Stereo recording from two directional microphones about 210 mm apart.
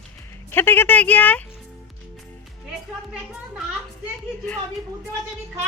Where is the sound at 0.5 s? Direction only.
10° left (ahead or behind).